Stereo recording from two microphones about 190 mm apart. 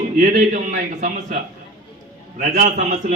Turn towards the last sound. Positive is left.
turn(degrees=-40)  # may be behind; listen again after turning